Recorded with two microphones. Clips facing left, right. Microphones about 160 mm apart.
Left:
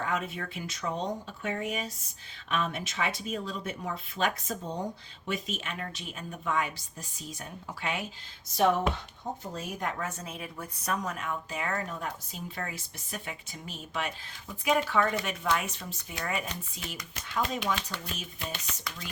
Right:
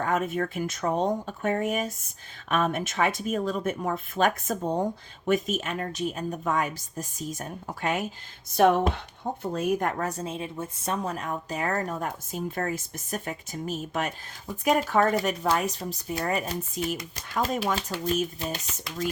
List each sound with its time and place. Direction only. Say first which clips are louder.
0.0 s speech: right 7 dB; 50° right (ahead or behind)
8.5 s speech: right 5 dB; 55° right (ahead or behind)
10.1 s a woman's voice: right 7 dB; 30° right (ahead or behind)